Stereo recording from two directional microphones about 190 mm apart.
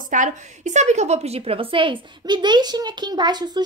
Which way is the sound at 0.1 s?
40° right (ahead or behind).